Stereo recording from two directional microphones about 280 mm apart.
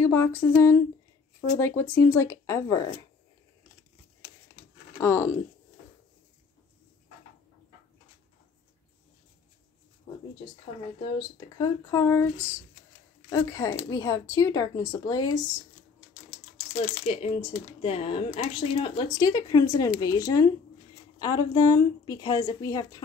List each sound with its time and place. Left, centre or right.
0.0 s speech: centre
5.0 s speech: centre
11.1 s speech: centre
13.3 s speech: centre
16.9 s speech: left